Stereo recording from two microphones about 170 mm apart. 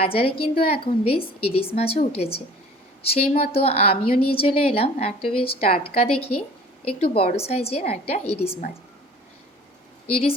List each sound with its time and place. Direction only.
0.0 s a woman's voice: 35° left (ahead or behind)
10.1 s a woman's voice: 35° left (ahead or behind)